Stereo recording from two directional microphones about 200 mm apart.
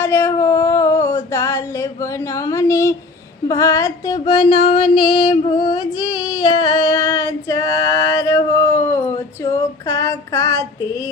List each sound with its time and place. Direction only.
0.0 s a sound: 10° left (ahead or behind)
3.5 s music: 15° left (ahead or behind)
9.4 s female singing: 15° left (ahead or behind)